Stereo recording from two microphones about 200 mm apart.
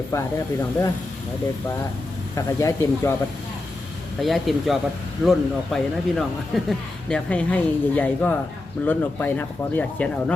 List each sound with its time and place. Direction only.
0.1 s speech: 15° left (ahead or behind)
2.3 s speech: 15° left (ahead or behind)
4.2 s speech: centre (ahead or behind)